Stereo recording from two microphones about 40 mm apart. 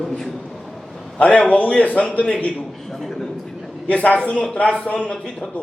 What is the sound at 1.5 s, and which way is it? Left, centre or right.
Speech, left.